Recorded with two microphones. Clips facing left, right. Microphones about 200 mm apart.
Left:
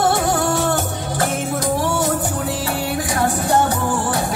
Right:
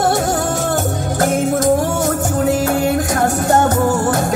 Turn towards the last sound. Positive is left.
turn(degrees=-45)  # may be behind; listen again after turning